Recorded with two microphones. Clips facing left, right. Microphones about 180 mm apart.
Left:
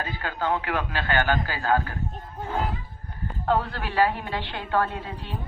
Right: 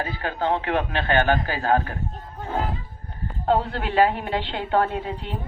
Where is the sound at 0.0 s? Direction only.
25° right (ahead or behind).